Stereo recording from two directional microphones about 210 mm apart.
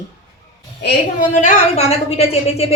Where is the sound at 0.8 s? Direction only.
35° left (ahead or behind).